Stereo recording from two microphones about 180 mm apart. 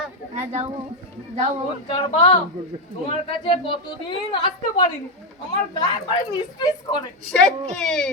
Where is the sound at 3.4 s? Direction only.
25° left (ahead or behind).